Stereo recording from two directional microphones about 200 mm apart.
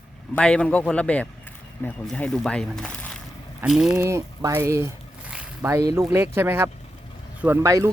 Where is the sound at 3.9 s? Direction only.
15° right (ahead or behind).